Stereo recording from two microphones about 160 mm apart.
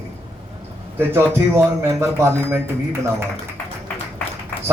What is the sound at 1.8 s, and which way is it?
Speech, 15° right (ahead or behind).